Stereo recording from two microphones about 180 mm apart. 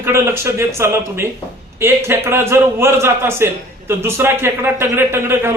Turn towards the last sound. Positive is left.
turn(degrees=-15)  # may be behind; listen again after turning